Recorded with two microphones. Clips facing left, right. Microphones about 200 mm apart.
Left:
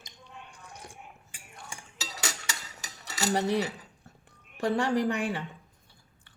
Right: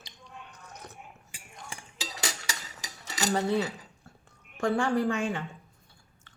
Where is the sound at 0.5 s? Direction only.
10° left (ahead or behind).